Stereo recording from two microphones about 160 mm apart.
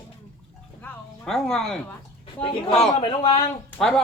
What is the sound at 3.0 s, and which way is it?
Speech, 30° left (ahead or behind).